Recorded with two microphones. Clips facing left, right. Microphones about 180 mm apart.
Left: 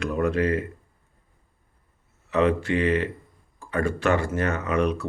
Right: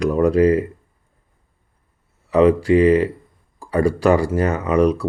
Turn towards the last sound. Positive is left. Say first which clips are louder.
# right 7 dB
turn(degrees=-35)  # may be behind; listen again after turning